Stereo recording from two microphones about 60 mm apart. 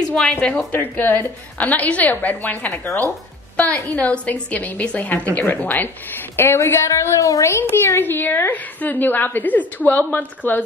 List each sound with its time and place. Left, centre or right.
0.2 s speech: centre
0.7 s a woman's voice: left
6.3 s a woman's voice: left
6.9 s a woman's voice: left
7.6 s a woman's voice: left